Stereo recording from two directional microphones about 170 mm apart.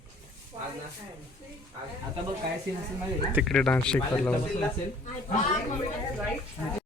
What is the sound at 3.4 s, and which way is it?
Speech, 5° left (ahead or behind).